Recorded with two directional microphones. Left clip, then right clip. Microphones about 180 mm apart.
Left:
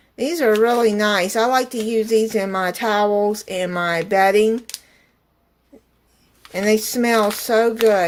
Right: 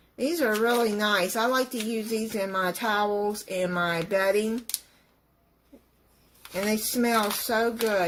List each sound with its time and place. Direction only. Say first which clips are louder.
0.2 s speech: left 8 dB; 45° left (ahead or behind)
6.5 s speech: left 10 dB; 45° left (ahead or behind)